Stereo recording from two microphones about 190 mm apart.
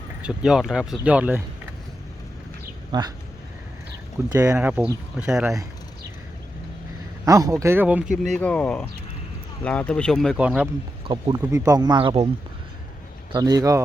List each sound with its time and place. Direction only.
0.2 s speech: 5° right (ahead or behind)
2.9 s speech: 20° right (ahead or behind)
4.3 s speech: 15° right (ahead or behind)
7.3 s speech: 20° right (ahead or behind)
8.4 s speech: 5° left (ahead or behind)
11.1 s speech: 20° right (ahead or behind)
13.3 s speech: 20° right (ahead or behind)